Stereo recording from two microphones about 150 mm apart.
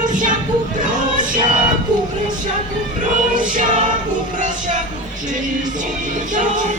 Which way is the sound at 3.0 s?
60° right (ahead or behind).